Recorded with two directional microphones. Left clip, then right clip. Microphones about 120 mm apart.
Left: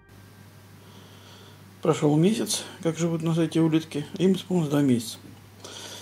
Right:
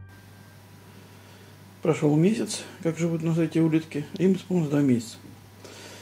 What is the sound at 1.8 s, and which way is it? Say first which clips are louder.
A man's voice: left 1 dB; 20° left (ahead or behind).